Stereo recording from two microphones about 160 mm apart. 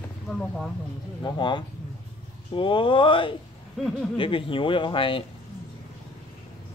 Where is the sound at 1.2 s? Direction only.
30° left (ahead or behind).